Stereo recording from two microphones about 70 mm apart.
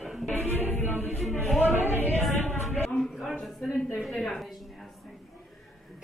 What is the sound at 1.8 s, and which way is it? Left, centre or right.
Music, left.